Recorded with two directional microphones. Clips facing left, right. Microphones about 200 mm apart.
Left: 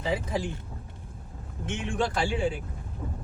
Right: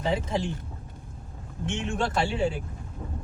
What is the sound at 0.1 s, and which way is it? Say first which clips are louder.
Speech: right 1 dB; 25° right (ahead or behind).